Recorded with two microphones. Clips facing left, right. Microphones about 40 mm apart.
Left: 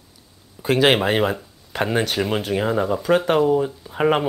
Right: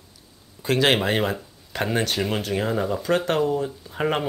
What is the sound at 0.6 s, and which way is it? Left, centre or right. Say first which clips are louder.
Speech: left 3 dB; centre.